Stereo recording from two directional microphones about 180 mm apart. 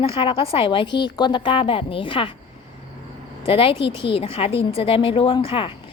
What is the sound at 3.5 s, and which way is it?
A woman's voice, 30° left (ahead or behind).